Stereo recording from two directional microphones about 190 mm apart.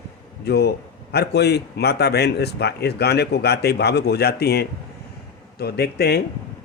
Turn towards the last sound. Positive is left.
turn(degrees=55)  # may be behind; listen again after turning